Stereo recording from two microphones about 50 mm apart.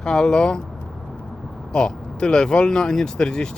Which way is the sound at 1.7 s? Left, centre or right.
Centre.